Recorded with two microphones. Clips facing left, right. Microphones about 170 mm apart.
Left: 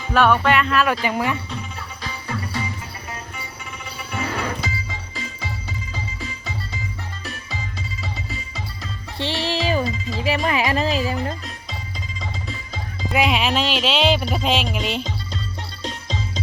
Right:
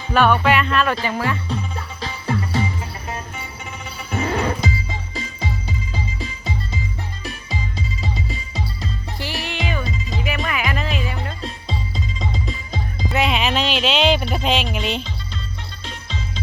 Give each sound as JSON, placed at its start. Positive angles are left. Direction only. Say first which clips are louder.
{"t": 0.1, "sound": "music", "louder": "right 1 dB", "side_deg": 0}
{"t": 1.0, "sound": "speech", "louder": "left 1 dB", "side_deg": 15}
{"t": 2.0, "sound": "music", "louder": "right 5 dB", "side_deg": -30}
{"t": 4.1, "sound": "music", "louder": "right 5 dB", "side_deg": -40}
{"t": 8.3, "sound": "music", "louder": "right 4 dB", "side_deg": -20}
{"t": 9.1, "sound": "music", "louder": "left 7 dB", "side_deg": 30}
{"t": 11.4, "sound": "music", "louder": "right 6 dB", "side_deg": -25}
{"t": 13.1, "sound": "music", "louder": "left 1 dB", "side_deg": 5}
{"t": 13.8, "sound": "speech", "louder": "right 2 dB", "side_deg": 5}
{"t": 14.7, "sound": "music", "louder": "right 1 dB", "side_deg": 5}
{"t": 15.8, "sound": "music", "louder": "left 4 dB", "side_deg": 40}